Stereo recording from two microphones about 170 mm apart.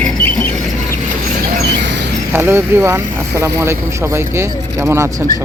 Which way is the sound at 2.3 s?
15° right (ahead or behind).